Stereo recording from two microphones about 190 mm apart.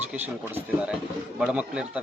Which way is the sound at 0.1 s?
5° right (ahead or behind).